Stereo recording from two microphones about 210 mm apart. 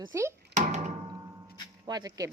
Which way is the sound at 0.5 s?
35° right (ahead or behind).